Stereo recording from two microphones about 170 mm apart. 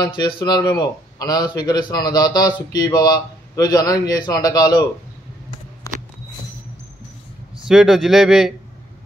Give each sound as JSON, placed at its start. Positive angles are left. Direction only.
{"t": 0.0, "sound": "a man's voice", "side_deg": 30}
{"t": 5.9, "sound": "a sound", "side_deg": 20}
{"t": 7.6, "sound": "a man's voice", "side_deg": 0}